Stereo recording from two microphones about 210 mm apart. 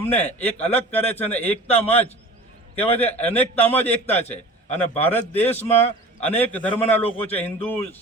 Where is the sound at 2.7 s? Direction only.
10° left (ahead or behind).